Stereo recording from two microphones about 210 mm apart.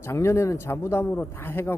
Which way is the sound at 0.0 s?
10° left (ahead or behind).